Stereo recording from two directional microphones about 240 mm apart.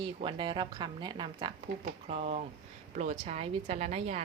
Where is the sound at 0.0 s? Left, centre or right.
Right.